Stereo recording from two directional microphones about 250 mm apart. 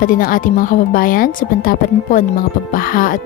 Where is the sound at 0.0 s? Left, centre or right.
Left.